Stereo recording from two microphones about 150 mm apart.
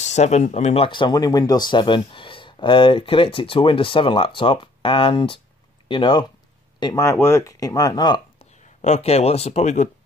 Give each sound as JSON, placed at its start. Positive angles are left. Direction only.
{"t": 0.0, "sound": "speech", "side_deg": 50}
{"t": 0.8, "sound": "speech", "side_deg": 30}
{"t": 8.4, "sound": "speech", "side_deg": 45}